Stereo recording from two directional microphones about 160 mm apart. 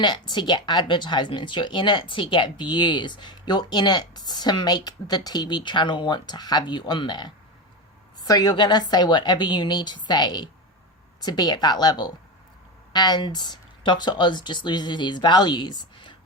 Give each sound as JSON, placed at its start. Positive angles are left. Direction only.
{"t": 0.0, "sound": "speech", "side_deg": 30}